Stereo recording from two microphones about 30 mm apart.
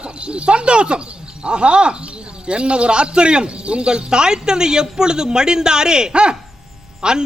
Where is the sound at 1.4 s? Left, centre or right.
Right.